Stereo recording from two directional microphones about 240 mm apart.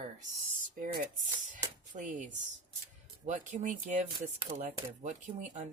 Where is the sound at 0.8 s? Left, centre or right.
Right.